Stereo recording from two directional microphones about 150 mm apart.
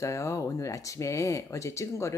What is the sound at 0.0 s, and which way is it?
Speech, 20° left (ahead or behind).